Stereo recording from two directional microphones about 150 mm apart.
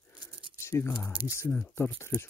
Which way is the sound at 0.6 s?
20° left (ahead or behind).